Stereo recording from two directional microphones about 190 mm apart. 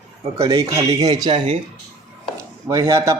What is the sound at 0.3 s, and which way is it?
Speech, 20° right (ahead or behind).